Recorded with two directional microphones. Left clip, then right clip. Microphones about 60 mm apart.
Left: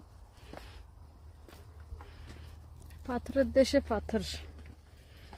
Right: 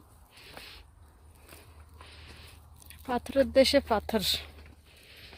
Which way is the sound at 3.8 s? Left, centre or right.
Right.